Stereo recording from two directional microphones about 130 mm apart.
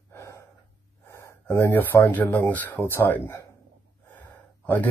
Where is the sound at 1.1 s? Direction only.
20° left (ahead or behind).